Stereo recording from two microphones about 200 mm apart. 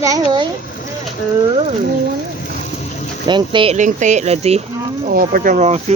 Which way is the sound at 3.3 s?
25° right (ahead or behind).